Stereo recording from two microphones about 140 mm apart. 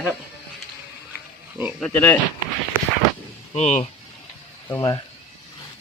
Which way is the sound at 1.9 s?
15° left (ahead or behind).